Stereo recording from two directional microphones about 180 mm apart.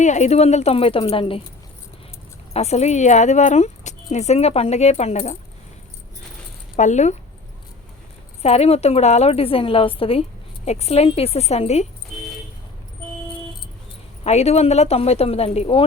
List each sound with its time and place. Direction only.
0.0 s speech: 40° left (ahead or behind)
2.5 s speech: 35° left (ahead or behind)
6.7 s speech: 40° left (ahead or behind)
8.4 s speech: 35° left (ahead or behind)
14.3 s speech: 35° left (ahead or behind)